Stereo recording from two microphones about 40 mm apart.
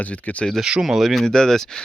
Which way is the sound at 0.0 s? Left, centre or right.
Left.